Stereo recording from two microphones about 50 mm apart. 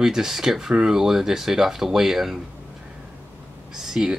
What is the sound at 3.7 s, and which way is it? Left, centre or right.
Speech, centre.